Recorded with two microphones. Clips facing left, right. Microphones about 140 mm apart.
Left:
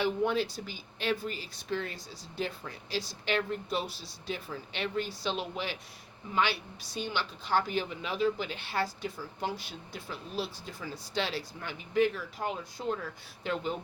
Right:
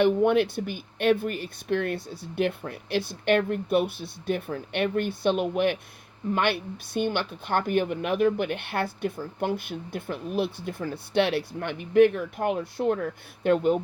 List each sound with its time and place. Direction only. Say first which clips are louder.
0.0 s a woman's voice: right 8 dB; 60° right (ahead or behind)